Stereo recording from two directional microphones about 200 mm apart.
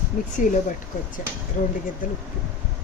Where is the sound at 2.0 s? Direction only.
45° left (ahead or behind).